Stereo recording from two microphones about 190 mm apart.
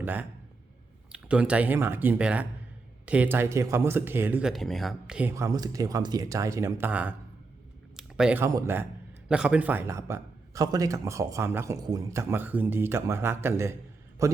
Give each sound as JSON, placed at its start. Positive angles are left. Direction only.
{"t": 0.0, "sound": "a man's voice", "side_deg": -10}
{"t": 5.3, "sound": "a man's voice", "side_deg": -15}